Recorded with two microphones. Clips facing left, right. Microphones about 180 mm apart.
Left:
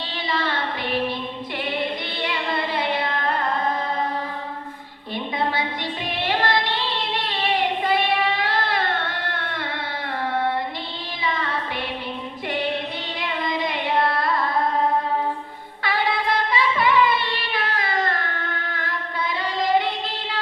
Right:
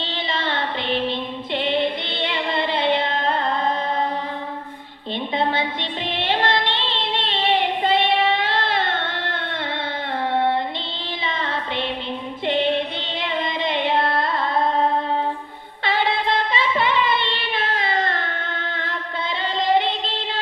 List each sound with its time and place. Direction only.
0.0 s female singing: 25° right (ahead or behind)
1.5 s child singing: 25° right (ahead or behind)
5.4 s music: 25° right (ahead or behind)
11.3 s music: 25° right (ahead or behind)
13.1 s carnatic music: 25° right (ahead or behind)
15.8 s music: 25° right (ahead or behind)
18.7 s chant: 25° right (ahead or behind)
19.5 s music: 25° right (ahead or behind)